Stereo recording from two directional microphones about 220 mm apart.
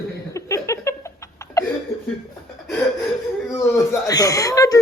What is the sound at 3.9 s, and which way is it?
Speech, 15° left (ahead or behind).